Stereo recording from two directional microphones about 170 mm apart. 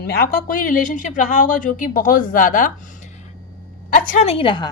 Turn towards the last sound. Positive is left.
turn(degrees=30)  # may be behind; listen again after turning